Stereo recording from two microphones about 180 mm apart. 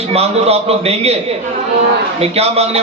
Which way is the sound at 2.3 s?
35° right (ahead or behind).